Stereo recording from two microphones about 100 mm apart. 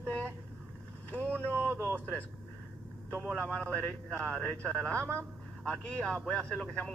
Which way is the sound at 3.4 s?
10° left (ahead or behind).